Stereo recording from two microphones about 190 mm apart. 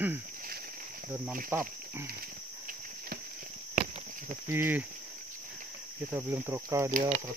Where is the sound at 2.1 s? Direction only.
50° right (ahead or behind).